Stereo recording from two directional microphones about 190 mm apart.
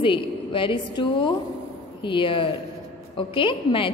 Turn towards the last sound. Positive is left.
turn(degrees=25)  # may be behind; listen again after turning